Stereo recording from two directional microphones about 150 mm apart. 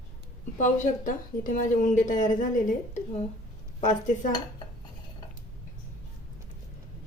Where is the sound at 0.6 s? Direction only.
55° left (ahead or behind).